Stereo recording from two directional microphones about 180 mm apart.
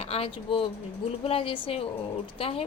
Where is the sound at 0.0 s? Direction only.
35° left (ahead or behind).